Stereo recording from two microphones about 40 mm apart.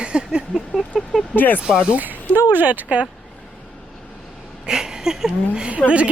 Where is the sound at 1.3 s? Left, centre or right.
Left.